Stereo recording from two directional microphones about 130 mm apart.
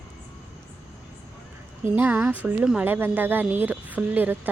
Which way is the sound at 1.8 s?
15° right (ahead or behind).